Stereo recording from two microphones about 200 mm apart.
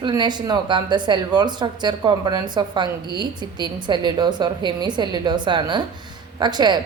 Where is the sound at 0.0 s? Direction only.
20° right (ahead or behind).